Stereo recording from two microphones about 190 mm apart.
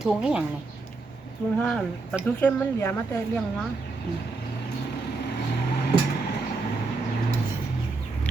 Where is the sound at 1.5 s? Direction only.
5° left (ahead or behind).